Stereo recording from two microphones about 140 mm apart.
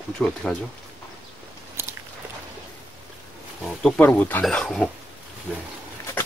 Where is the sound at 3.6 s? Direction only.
5° left (ahead or behind).